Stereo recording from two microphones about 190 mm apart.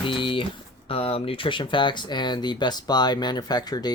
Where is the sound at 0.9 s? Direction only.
30° left (ahead or behind).